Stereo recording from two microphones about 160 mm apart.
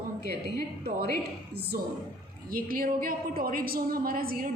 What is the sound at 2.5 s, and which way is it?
A woman's voice, 65° right (ahead or behind).